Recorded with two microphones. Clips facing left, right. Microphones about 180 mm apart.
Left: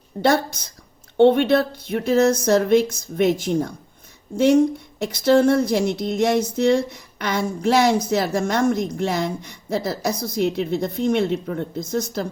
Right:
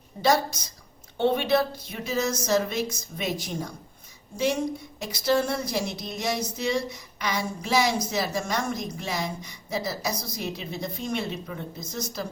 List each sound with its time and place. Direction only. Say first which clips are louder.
0.2 s speech: left 4 dB; 60° left (ahead or behind)
5.2 s speech: left 9 dB; 55° left (ahead or behind)